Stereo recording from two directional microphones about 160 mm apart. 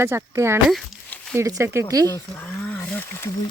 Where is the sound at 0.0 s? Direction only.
15° right (ahead or behind).